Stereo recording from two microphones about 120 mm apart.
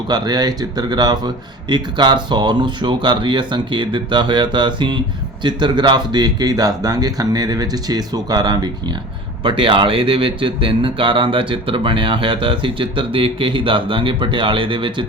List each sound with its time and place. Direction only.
0.1 s speech: 35° right (ahead or behind)
9.4 s speech: 45° right (ahead or behind)